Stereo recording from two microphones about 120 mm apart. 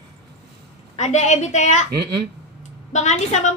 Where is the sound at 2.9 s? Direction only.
75° left (ahead or behind).